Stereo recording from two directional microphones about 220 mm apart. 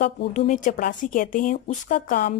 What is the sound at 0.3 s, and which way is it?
Speech, 35° left (ahead or behind).